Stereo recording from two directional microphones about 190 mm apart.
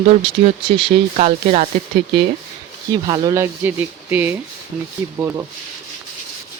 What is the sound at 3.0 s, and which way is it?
Speech, 25° right (ahead or behind).